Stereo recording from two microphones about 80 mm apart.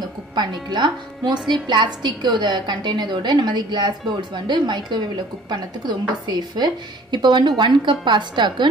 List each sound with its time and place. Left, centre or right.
0.4 s a woman's voice: right